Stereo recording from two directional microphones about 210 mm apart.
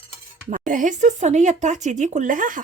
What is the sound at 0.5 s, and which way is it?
Speech, 40° right (ahead or behind).